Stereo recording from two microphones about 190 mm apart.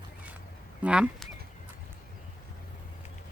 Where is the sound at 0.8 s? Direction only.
5° right (ahead or behind).